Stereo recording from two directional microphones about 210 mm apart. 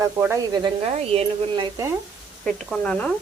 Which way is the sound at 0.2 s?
15° right (ahead or behind).